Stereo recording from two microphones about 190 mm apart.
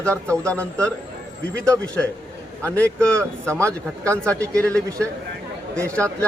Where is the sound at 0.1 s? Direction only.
5° left (ahead or behind).